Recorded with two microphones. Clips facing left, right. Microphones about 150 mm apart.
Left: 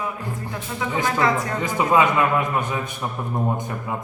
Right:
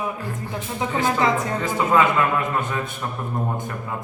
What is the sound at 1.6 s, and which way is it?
A man's voice, 15° left (ahead or behind).